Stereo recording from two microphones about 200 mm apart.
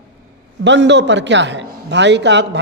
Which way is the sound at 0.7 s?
60° right (ahead or behind).